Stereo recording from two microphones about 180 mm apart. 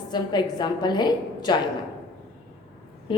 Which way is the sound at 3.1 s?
30° left (ahead or behind).